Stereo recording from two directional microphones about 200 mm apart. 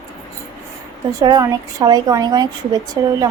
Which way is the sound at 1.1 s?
20° right (ahead or behind).